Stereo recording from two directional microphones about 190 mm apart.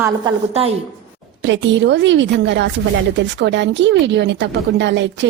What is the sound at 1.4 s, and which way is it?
A woman's voice, 70° right (ahead or behind).